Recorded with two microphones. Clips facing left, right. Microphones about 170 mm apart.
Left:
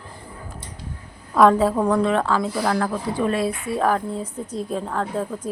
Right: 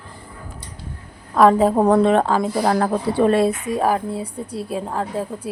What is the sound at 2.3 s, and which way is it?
A woman's voice, 25° right (ahead or behind).